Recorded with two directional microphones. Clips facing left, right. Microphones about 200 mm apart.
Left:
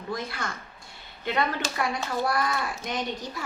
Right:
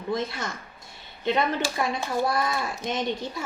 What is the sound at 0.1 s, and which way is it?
Speech, 25° right (ahead or behind).